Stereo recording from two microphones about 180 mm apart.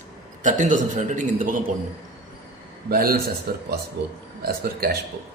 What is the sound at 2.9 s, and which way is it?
Speech, 55° right (ahead or behind).